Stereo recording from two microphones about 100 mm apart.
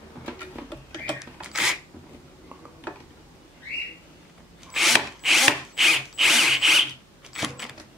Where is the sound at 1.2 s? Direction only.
5° right (ahead or behind).